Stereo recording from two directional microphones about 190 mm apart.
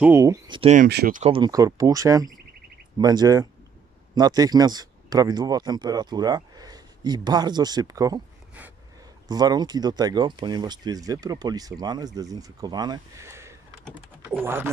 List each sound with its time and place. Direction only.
0.0 s speech: 15° right (ahead or behind)
0.6 s speech: 35° right (ahead or behind)
0.8 s speech: 55° right (ahead or behind)
1.2 s speech: 25° right (ahead or behind)